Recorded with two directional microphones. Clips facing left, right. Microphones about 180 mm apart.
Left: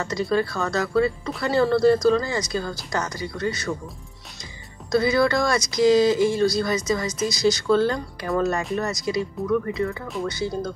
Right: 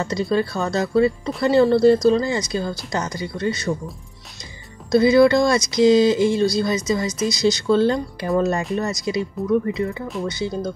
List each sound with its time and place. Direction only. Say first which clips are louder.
0.0 s speech: right 2 dB; 25° right (ahead or behind)
4.9 s speech: right 6 dB; 25° right (ahead or behind)